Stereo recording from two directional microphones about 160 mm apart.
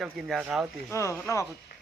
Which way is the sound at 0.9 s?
20° left (ahead or behind).